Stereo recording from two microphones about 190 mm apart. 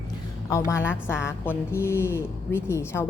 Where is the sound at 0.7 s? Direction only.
15° left (ahead or behind).